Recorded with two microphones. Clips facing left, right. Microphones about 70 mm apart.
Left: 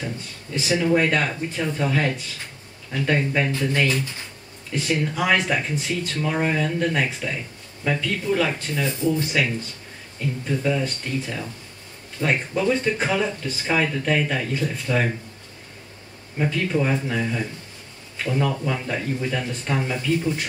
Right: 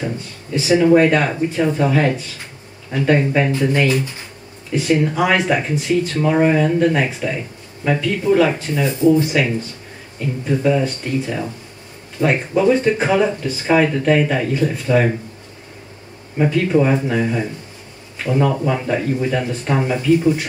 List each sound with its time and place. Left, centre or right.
0.6 s speech: centre
9.2 s speech: centre
16.3 s speech: centre